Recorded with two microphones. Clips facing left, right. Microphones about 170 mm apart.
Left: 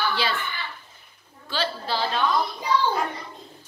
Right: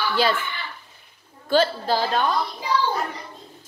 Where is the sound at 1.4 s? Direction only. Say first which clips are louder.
Right 8 dB; 45° right (ahead or behind).